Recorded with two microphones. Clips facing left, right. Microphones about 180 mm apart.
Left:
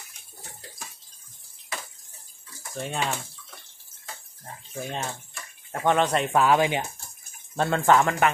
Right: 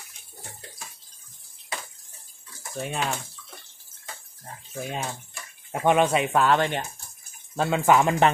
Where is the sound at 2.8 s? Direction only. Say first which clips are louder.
Even; 5° right (ahead or behind).